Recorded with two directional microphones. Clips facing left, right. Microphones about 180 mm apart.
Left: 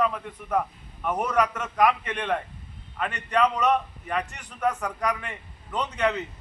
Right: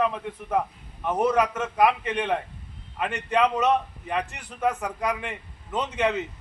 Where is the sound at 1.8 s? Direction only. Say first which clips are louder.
Right 1 dB; 10° right (ahead or behind).